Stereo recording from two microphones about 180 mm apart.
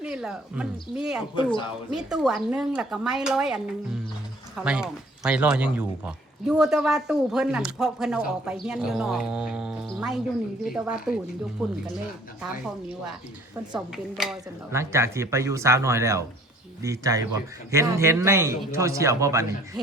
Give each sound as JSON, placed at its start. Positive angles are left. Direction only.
{"t": 0.0, "sound": "speech", "side_deg": -5}
{"t": 1.4, "sound": "speech", "side_deg": 25}
{"t": 1.9, "sound": "speech", "side_deg": -5}
{"t": 13.7, "sound": "speech", "side_deg": 0}
{"t": 14.7, "sound": "a man's voice", "side_deg": -15}